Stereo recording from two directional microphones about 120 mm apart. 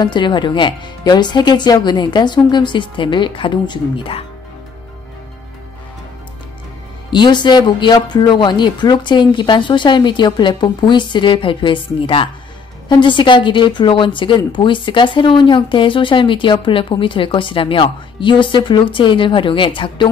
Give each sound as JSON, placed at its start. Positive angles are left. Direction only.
{"t": 0.0, "sound": "speech", "side_deg": 40}
{"t": 7.1, "sound": "a woman's voice", "side_deg": 40}